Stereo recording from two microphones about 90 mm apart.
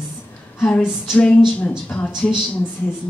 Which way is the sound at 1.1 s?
15° left (ahead or behind).